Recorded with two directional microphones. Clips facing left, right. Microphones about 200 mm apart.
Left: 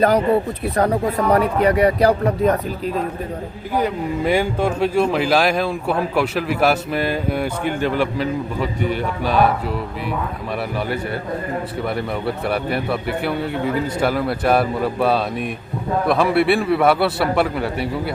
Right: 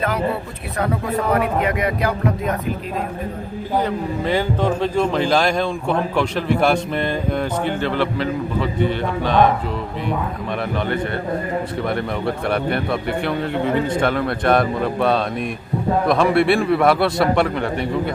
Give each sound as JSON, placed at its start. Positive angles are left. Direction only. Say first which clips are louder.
{"t": 0.8, "sound": "a man's voice", "louder": "left 3 dB", "side_deg": 40}
{"t": 3.8, "sound": "speech", "louder": "left 1 dB", "side_deg": 10}
{"t": 11.8, "sound": "speech", "louder": "right 1 dB", "side_deg": 5}